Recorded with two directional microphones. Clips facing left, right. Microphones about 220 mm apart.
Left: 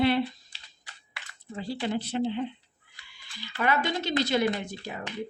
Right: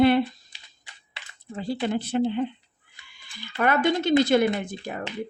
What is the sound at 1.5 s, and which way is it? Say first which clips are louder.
Speech: right 4 dB; 50° right (ahead or behind).